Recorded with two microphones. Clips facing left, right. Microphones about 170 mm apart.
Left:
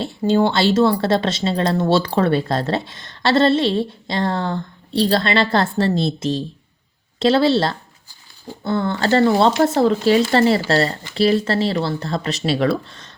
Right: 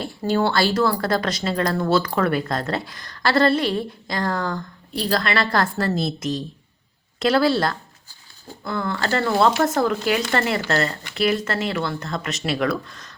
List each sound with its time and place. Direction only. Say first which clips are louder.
0.0 s speech: left 4 dB; 20° left (ahead or behind)